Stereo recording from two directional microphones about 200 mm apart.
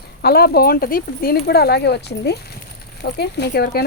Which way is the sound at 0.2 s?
50° left (ahead or behind).